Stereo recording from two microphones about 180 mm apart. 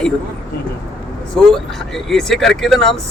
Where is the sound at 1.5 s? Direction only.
Centre (ahead or behind).